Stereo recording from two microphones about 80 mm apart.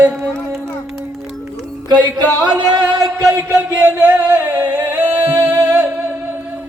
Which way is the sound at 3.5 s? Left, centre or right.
Centre.